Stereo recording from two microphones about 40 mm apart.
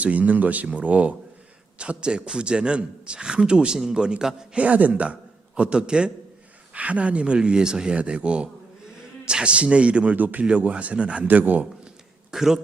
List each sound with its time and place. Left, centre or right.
0.0 s speech: right
1.8 s a man's voice: right
4.5 s speech: right
5.5 s a man's voice: right
6.7 s a man's voice: right
10.2 s a man's voice: right
10.6 s speech: right
11.3 s a man's voice: right
12.3 s speech: centre